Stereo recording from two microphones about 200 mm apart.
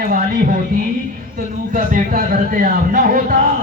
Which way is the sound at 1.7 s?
40° right (ahead or behind).